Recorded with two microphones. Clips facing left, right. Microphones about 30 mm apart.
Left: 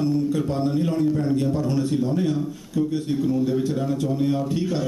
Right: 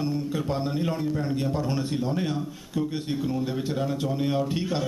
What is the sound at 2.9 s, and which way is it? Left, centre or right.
Speech, right.